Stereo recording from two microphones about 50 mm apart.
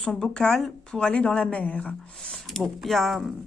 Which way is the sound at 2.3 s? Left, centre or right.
Centre.